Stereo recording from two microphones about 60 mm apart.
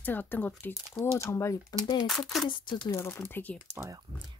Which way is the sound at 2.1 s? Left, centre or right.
Centre.